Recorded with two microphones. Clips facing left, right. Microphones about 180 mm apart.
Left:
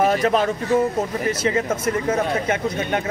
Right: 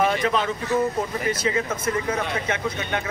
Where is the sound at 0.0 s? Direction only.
40° left (ahead or behind).